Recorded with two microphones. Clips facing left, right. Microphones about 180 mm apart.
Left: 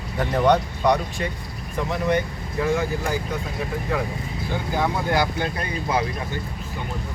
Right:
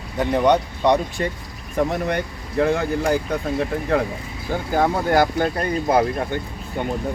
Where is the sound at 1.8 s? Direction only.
55° right (ahead or behind).